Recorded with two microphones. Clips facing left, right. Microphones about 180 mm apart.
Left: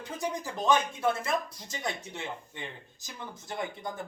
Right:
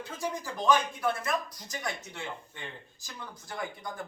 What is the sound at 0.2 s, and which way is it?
Speech, 20° left (ahead or behind).